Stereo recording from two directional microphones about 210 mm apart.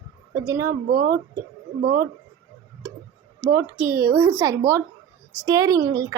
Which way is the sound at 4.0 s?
15° right (ahead or behind).